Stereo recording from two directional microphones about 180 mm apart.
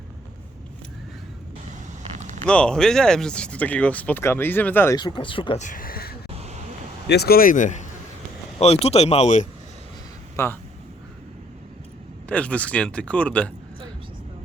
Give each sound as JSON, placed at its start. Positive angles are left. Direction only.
{"t": 2.1, "sound": "a sound", "side_deg": -40}
{"t": 2.5, "sound": "speech", "side_deg": 5}
{"t": 4.9, "sound": "speech", "side_deg": 25}
{"t": 5.5, "sound": "speech", "side_deg": 45}
{"t": 6.3, "sound": "vehicle", "side_deg": -35}
{"t": 7.1, "sound": "speech", "side_deg": 60}
{"t": 10.3, "sound": "speech", "side_deg": 15}
{"t": 12.3, "sound": "speech", "side_deg": 5}